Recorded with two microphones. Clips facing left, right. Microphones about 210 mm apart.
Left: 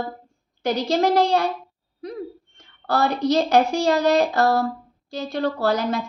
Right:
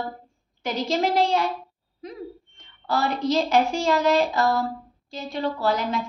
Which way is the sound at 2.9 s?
65° left (ahead or behind).